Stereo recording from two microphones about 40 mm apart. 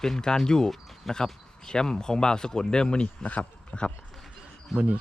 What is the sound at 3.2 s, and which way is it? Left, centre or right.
Speech, left.